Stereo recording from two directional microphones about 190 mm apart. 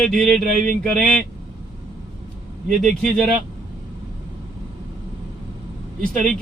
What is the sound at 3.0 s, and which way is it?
Speech, centre (ahead or behind).